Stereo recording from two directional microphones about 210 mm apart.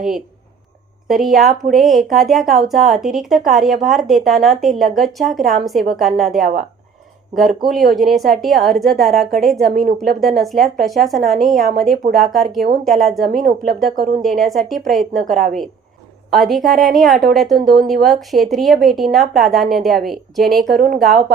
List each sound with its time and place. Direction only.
1.0 s a woman's voice: centre (ahead or behind)
6.4 s speech: 35° right (ahead or behind)
7.7 s a woman's voice: centre (ahead or behind)
13.8 s speech: 45° right (ahead or behind)
14.2 s a woman's voice: centre (ahead or behind)
15.3 s speech: 35° right (ahead or behind)
16.3 s a woman's voice: centre (ahead or behind)